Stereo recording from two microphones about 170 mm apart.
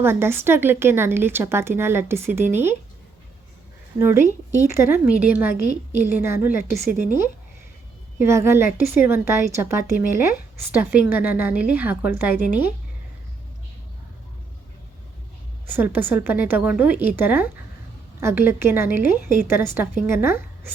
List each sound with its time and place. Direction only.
0.0 s a woman's voice: 15° right (ahead or behind)
3.9 s a woman's voice: 15° right (ahead or behind)
6.5 s a woman's voice: 55° left (ahead or behind)
8.2 s a woman's voice: 15° right (ahead or behind)
15.6 s a woman's voice: 10° right (ahead or behind)